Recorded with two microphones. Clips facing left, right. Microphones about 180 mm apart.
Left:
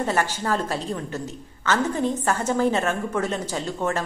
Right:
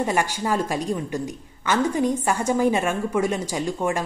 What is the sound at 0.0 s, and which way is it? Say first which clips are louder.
A woman's voice: right 1 dB; 15° right (ahead or behind).